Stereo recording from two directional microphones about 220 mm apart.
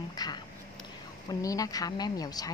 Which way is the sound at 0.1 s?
20° left (ahead or behind).